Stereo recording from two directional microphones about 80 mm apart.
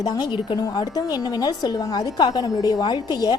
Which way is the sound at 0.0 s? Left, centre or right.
Left.